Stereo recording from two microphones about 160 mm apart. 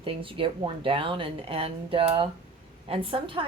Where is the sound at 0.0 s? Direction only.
35° right (ahead or behind).